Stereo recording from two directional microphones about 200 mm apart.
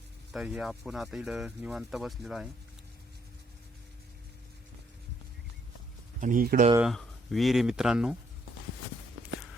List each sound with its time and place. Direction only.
0.3 s speech: 5° right (ahead or behind)
6.1 s speech: 40° right (ahead or behind)
6.7 s speech: centre (ahead or behind)